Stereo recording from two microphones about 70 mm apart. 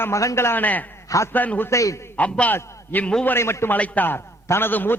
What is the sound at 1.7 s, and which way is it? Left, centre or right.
Speech, left.